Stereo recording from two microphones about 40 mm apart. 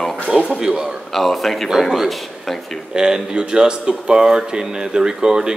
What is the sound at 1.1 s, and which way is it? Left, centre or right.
Speech, centre.